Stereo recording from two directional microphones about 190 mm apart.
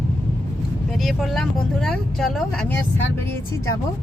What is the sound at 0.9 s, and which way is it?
Speech, centre (ahead or behind).